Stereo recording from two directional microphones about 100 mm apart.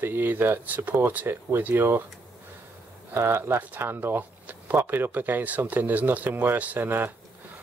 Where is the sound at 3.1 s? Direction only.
25° right (ahead or behind).